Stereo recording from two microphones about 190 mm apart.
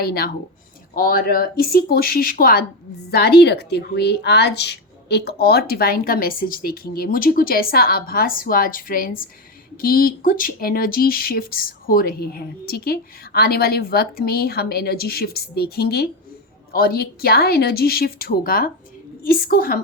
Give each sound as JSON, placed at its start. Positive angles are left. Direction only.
{"t": 0.0, "sound": "speech", "side_deg": 55}